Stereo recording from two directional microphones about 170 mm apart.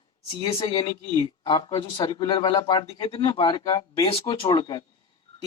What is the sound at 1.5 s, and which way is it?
Speech, 30° left (ahead or behind).